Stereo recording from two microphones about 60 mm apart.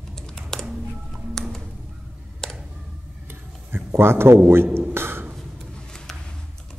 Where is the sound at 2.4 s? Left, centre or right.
Centre.